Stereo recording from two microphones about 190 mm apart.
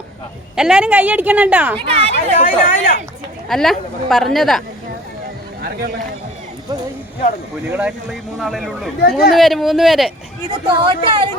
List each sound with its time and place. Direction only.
0.5 s a woman's voice: 5° right (ahead or behind)
1.8 s speech: 30° right (ahead or behind)
2.1 s speech: 45° left (ahead or behind)
3.5 s speech: centre (ahead or behind)
7.7 s speech: 10° right (ahead or behind)
9.0 s speech: 55° left (ahead or behind)
9.3 s speech: centre (ahead or behind)
10.7 s speech: 25° right (ahead or behind)